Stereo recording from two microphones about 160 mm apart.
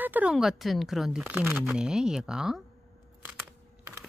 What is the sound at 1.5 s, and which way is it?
Speech, 5° right (ahead or behind).